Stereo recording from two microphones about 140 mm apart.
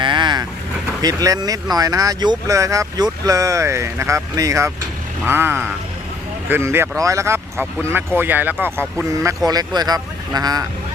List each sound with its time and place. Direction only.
0.0 s vehicle: 35° right (ahead or behind)
1.0 s speech: 25° right (ahead or behind)
9.2 s speech: 25° right (ahead or behind)